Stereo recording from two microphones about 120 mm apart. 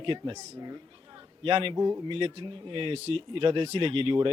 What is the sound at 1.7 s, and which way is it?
Speech, 30° right (ahead or behind).